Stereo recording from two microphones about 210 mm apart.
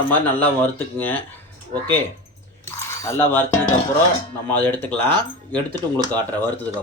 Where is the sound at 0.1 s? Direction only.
10° left (ahead or behind).